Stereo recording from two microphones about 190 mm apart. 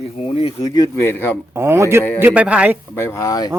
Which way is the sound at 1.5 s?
15° right (ahead or behind).